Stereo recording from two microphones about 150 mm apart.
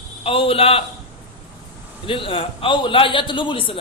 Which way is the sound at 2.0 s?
35° left (ahead or behind).